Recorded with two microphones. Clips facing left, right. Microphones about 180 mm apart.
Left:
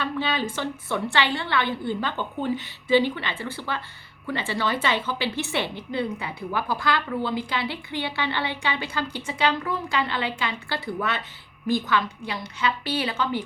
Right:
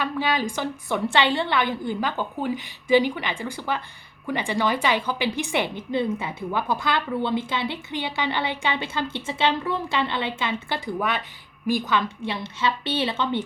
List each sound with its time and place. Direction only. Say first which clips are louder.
0.0 s a woman's voice: right 2 dB; 10° right (ahead or behind)